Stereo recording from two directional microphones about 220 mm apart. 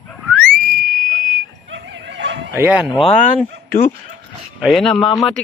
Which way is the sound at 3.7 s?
40° left (ahead or behind).